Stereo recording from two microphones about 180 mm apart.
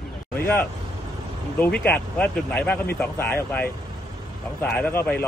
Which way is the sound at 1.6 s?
10° left (ahead or behind).